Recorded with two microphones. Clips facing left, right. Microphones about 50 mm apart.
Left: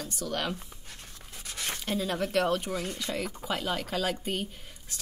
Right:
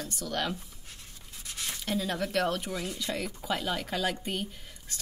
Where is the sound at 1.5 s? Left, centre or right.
Left.